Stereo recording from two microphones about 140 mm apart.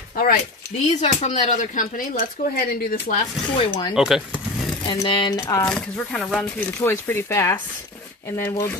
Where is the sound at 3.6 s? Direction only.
40° left (ahead or behind).